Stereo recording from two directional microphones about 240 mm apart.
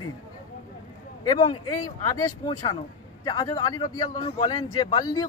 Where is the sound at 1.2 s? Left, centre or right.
Centre.